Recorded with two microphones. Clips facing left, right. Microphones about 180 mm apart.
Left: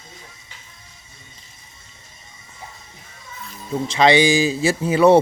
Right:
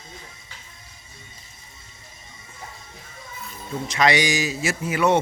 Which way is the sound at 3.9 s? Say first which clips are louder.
Left 6 dB; 30° left (ahead or behind).